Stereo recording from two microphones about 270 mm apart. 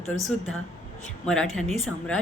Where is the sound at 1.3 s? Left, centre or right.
Centre.